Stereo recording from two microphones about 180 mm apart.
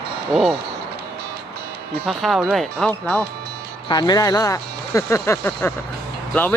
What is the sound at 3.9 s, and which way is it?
Speech, 20° left (ahead or behind).